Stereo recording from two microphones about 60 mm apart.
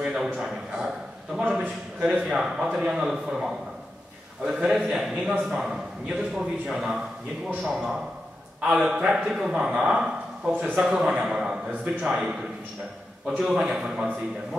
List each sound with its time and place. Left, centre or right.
0.1 s a man's voice: centre
1.5 s a man's voice: right
2.2 s a man's voice: centre
13.4 s a man's voice: centre